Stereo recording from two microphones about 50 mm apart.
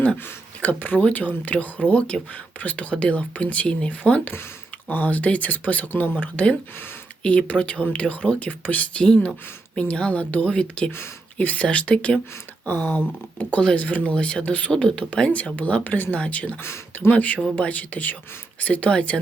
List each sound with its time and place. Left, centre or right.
0.6 s speech: left
7.2 s speech: left
12.6 s speech: left
13.4 s speech: left
15.8 s speech: left
16.1 s speech: left
16.6 s speech: left
17.1 s speech: left